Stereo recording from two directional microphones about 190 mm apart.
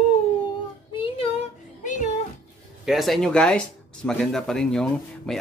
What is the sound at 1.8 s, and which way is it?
Music, 40° left (ahead or behind).